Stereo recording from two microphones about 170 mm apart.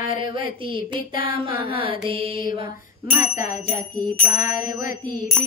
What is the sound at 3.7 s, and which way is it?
Bicycle bell, 15° right (ahead or behind).